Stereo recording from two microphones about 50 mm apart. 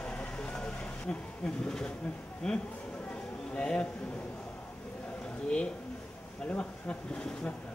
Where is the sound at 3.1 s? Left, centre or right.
Left.